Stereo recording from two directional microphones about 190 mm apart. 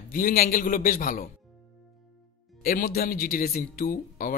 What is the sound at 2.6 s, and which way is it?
A man's voice, 55° left (ahead or behind).